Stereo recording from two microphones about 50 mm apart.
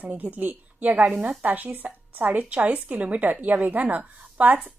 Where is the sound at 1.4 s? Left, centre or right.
Right.